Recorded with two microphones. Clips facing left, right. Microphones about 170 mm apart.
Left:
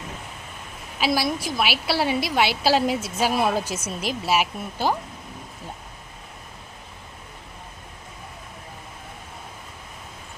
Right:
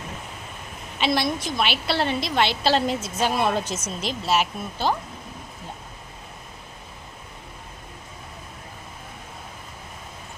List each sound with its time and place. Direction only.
0.9 s a woman's voice: 5° left (ahead or behind)